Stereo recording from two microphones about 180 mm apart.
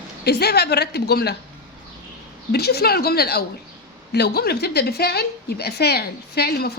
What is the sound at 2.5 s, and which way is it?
A woman's voice, 65° left (ahead or behind).